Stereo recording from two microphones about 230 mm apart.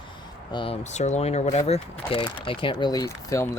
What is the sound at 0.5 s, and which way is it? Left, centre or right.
Speech, left.